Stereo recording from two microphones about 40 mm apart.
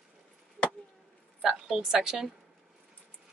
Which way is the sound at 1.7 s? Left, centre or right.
Centre.